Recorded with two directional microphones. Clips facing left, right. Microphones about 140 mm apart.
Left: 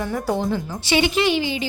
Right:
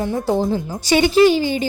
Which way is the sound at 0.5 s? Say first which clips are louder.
Right 4 dB; 40° right (ahead or behind).